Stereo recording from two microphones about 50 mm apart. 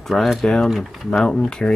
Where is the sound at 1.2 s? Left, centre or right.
Centre.